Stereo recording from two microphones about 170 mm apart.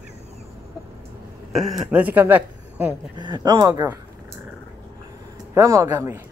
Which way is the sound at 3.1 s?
25° right (ahead or behind).